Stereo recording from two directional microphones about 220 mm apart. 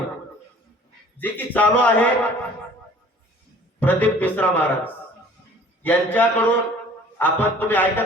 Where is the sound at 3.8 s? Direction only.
5° left (ahead or behind).